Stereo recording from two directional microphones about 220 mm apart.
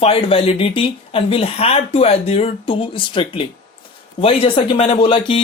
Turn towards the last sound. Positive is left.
turn(degrees=25)  # may be behind; listen again after turning